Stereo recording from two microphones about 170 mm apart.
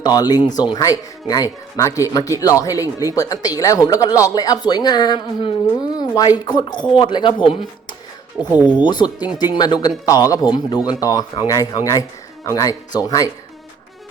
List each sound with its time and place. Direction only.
0.0 s speech: 25° left (ahead or behind)
8.4 s speech: 10° right (ahead or behind)
8.8 s speech: 25° left (ahead or behind)